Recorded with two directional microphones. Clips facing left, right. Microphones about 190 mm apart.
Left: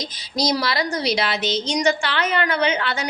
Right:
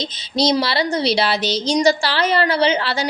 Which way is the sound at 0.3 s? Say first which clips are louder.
Right 4 dB; 25° right (ahead or behind).